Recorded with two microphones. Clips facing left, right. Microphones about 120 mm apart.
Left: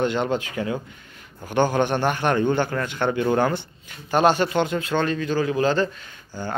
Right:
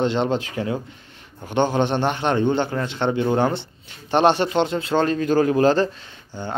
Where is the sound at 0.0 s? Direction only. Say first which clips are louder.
Right 2 dB; 25° right (ahead or behind).